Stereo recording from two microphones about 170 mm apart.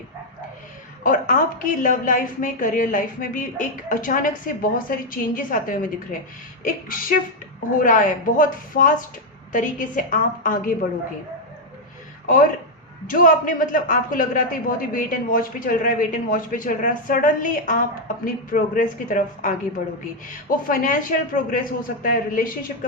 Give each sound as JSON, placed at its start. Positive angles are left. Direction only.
{"t": 1.0, "sound": "speech", "side_deg": 50}
{"t": 12.2, "sound": "speech", "side_deg": 50}